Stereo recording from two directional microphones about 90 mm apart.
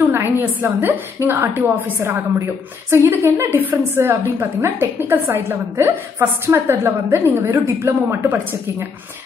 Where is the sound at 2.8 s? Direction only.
25° right (ahead or behind).